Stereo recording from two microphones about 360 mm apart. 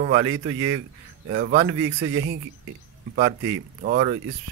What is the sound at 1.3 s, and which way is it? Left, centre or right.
Speech, right.